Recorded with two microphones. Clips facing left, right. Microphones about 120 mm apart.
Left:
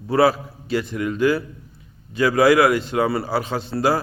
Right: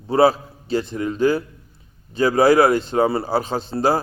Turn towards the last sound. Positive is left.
turn(degrees=-25)  # may be behind; listen again after turning